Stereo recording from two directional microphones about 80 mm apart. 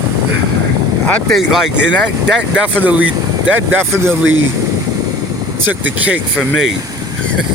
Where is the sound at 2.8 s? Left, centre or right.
Centre.